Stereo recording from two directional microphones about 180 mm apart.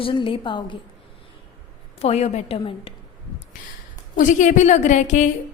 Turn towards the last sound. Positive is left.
turn(degrees=40)  # may be behind; listen again after turning